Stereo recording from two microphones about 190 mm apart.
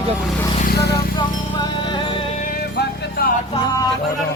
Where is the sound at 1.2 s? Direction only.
25° left (ahead or behind).